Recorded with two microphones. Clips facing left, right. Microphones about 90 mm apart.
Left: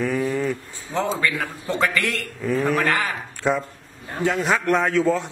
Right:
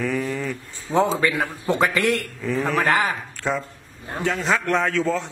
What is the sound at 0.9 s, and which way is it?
A man's voice, 20° right (ahead or behind).